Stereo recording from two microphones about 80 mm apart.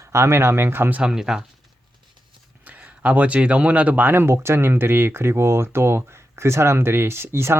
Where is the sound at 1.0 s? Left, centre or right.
Centre.